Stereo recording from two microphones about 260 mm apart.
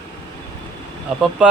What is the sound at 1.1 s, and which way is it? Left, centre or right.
Speech, centre.